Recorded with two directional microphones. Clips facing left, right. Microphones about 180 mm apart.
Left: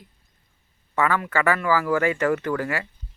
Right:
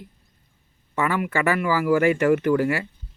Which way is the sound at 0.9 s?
15° right (ahead or behind).